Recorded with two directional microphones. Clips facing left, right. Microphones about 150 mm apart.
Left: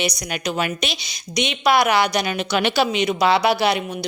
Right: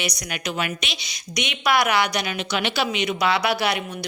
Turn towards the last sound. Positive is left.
turn(degrees=25)  # may be behind; listen again after turning